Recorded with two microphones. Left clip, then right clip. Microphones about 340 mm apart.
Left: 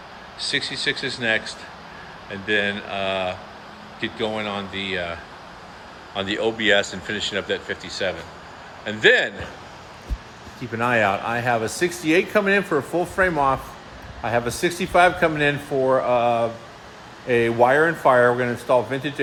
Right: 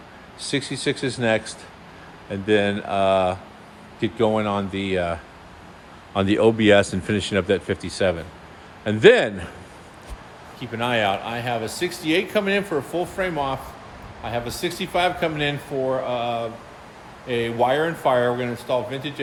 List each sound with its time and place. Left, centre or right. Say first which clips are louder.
0.5 s speech: left 1 dB; centre
4.4 s speech: right 3 dB; centre
6.1 s speech: right 5 dB; centre
10.7 s a man's voice: left 2 dB; centre